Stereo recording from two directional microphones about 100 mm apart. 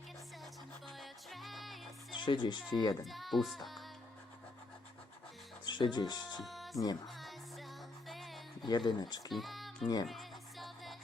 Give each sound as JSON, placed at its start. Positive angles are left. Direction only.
{"t": 0.9, "sound": "music", "side_deg": 0}
{"t": 2.1, "sound": "speech", "side_deg": 50}
{"t": 3.0, "sound": "music", "side_deg": 0}
{"t": 5.6, "sound": "speech", "side_deg": 50}
{"t": 6.4, "sound": "music", "side_deg": 0}
{"t": 8.6, "sound": "speech", "side_deg": 50}
{"t": 9.3, "sound": "speech", "side_deg": 0}
{"t": 10.1, "sound": "music", "side_deg": 0}